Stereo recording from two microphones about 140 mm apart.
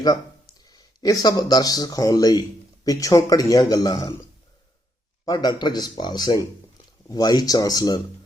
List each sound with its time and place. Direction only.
0.7 s speech: 25° left (ahead or behind)
5.2 s speech: 30° left (ahead or behind)